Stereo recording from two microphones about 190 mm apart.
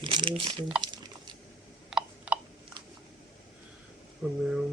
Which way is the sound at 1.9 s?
5° right (ahead or behind).